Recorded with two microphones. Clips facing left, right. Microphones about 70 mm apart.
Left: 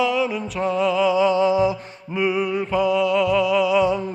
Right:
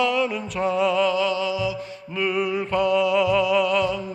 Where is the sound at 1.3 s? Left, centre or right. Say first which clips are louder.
Left 7 dB; left.